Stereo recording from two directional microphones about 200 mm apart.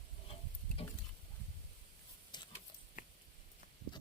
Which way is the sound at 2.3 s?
20° left (ahead or behind).